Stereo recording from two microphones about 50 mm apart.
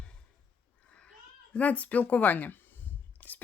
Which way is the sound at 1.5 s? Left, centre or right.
Left.